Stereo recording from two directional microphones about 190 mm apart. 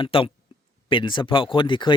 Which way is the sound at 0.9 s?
25° left (ahead or behind).